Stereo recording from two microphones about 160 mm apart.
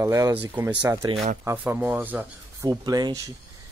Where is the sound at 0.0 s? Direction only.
20° right (ahead or behind).